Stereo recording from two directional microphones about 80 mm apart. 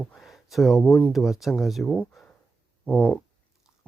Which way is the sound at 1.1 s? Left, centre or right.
Centre.